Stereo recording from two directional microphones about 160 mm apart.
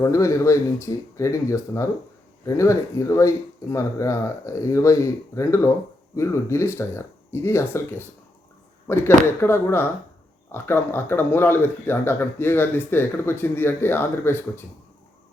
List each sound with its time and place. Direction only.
0.0 s speech: 20° left (ahead or behind)